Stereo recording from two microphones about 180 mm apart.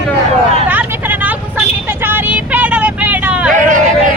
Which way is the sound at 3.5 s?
45° right (ahead or behind).